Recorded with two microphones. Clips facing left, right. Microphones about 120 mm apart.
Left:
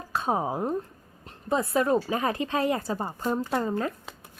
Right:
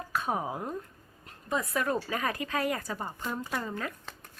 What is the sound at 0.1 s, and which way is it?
A woman's voice, 30° left (ahead or behind).